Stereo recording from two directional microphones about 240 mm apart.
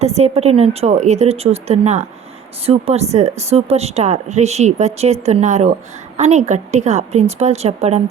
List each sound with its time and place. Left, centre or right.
0.0 s speech: right